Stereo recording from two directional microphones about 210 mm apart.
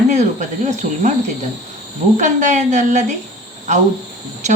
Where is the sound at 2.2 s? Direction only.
35° right (ahead or behind).